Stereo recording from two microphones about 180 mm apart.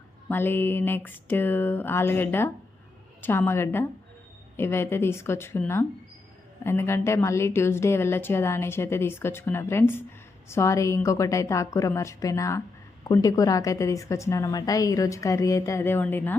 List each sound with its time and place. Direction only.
0.3 s a woman's voice: 10° left (ahead or behind)